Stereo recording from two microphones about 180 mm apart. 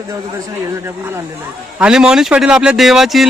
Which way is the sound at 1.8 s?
5° right (ahead or behind).